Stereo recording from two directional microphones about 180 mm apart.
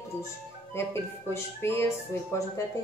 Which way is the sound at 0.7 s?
15° left (ahead or behind).